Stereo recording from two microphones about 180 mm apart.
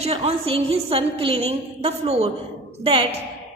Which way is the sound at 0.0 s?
35° right (ahead or behind).